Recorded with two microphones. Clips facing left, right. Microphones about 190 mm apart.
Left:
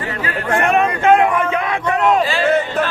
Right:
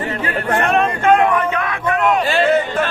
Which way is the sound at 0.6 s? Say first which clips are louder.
Left 2 dB; 15° left (ahead or behind).